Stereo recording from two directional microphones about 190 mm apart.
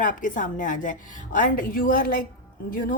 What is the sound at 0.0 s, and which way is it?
A woman's voice, 45° left (ahead or behind).